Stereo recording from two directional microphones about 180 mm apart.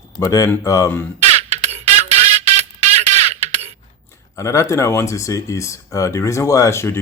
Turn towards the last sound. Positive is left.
turn(degrees=15)  # may be behind; listen again after turning